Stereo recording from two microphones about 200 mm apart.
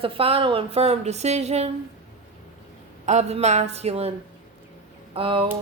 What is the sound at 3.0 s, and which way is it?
A woman's voice, 35° right (ahead or behind).